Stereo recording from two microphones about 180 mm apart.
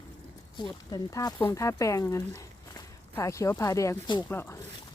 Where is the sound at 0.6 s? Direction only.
25° left (ahead or behind).